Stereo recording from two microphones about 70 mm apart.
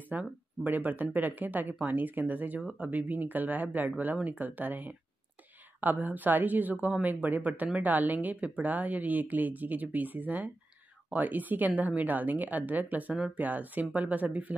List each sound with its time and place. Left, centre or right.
0.1 s a woman's voice: right